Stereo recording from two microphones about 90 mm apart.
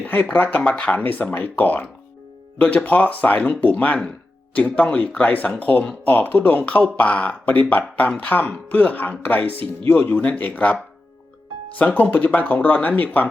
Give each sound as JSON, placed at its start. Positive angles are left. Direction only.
{"t": 0.0, "sound": "speech", "side_deg": 20}
{"t": 11.8, "sound": "speech", "side_deg": 15}